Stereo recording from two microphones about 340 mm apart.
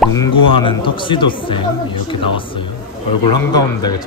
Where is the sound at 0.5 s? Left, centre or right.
Centre.